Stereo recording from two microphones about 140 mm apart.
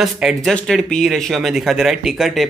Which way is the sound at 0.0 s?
Centre (ahead or behind).